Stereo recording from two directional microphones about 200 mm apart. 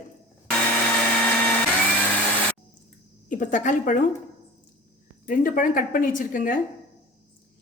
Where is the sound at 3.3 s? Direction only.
40° left (ahead or behind).